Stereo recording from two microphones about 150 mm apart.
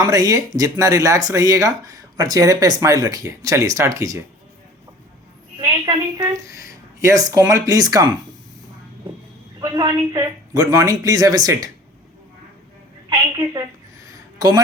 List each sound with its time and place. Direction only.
0.0 s speech: 25° right (ahead or behind)
5.5 s a woman's voice: 25° right (ahead or behind)
9.6 s speech: 25° right (ahead or behind)
13.3 s a sound: 25° right (ahead or behind)